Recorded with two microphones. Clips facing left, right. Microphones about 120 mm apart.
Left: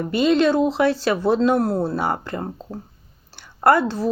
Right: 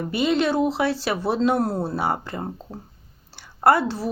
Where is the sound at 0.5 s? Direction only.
20° left (ahead or behind).